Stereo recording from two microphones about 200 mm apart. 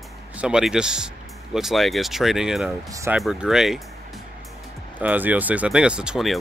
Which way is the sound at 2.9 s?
15° right (ahead or behind).